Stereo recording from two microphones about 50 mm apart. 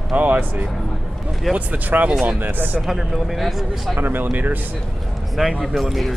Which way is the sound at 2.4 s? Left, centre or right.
Right.